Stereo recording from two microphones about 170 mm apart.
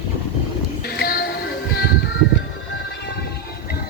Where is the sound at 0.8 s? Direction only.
65° left (ahead or behind).